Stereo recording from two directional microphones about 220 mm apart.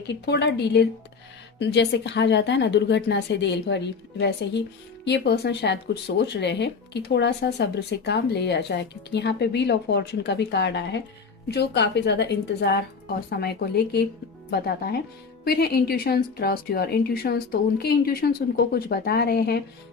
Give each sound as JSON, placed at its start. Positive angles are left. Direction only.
{"t": 0.1, "sound": "speech", "side_deg": 50}
{"t": 15.4, "sound": "speech", "side_deg": 45}